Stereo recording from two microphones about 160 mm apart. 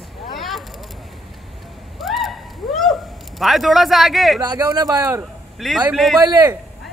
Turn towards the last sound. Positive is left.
turn(degrees=-20)  # may be behind; listen again after turning